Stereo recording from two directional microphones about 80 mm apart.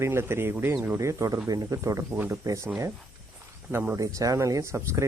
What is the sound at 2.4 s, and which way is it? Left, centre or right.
Speech, right.